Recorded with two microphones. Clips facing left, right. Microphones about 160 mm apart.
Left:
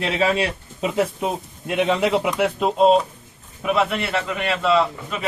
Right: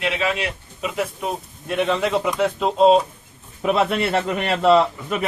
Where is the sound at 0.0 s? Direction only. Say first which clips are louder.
Left 3 dB; 35° left (ahead or behind).